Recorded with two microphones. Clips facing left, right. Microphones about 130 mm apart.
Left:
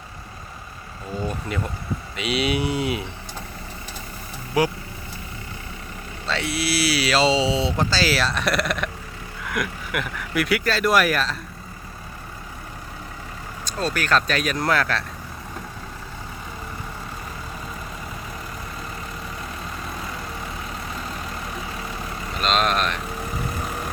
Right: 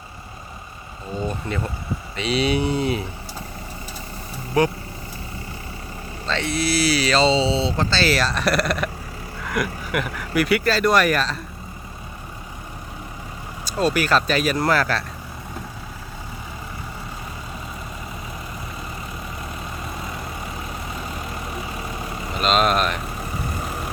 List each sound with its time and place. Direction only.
1.3 s speech: 5° left (ahead or behind)
4.6 s speech: 10° left (ahead or behind)
6.2 s speech: 5° left (ahead or behind)
13.7 s speech: 10° right (ahead or behind)
21.5 s vehicle: 15° right (ahead or behind)
22.4 s speech: 5° right (ahead or behind)